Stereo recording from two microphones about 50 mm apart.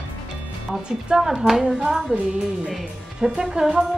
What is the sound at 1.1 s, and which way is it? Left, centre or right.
A woman's voice, centre.